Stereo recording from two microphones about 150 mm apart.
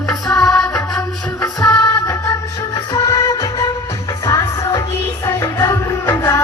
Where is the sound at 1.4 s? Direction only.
25° left (ahead or behind).